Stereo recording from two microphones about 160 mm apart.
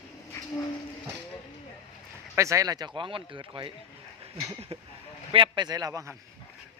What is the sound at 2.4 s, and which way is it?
Speech, 20° right (ahead or behind).